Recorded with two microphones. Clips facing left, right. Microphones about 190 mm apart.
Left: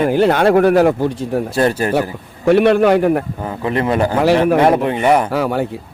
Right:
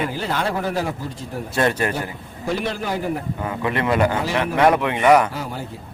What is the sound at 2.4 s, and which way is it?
Speech, 65° left (ahead or behind).